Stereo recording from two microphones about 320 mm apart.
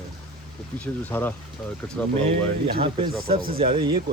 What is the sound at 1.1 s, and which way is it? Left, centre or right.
Speech, centre.